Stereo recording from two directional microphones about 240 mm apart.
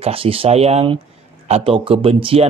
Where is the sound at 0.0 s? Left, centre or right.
Right.